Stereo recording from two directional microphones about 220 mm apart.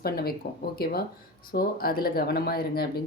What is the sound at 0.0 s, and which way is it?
A woman's voice, 45° left (ahead or behind).